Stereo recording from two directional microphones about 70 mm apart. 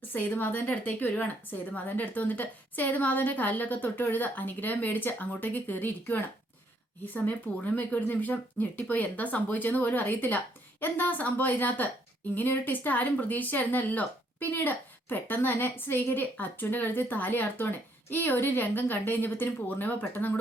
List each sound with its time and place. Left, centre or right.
0.1 s speech: left